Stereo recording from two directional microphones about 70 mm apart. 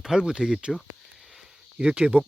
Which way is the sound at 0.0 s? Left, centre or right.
Centre.